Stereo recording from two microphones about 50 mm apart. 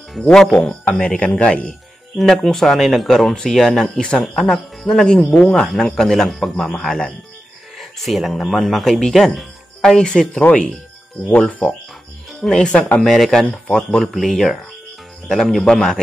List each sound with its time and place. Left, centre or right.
0.3 s speech: centre
0.8 s speech: left
2.1 s speech: centre
3.8 s speech: centre
4.4 s speech: centre
4.8 s speech: centre
5.9 s speech: centre
6.5 s speech: left
6.8 s speech: centre
10.4 s speech: left
12.4 s speech: centre
13.5 s speech: left
14.0 s speech: centre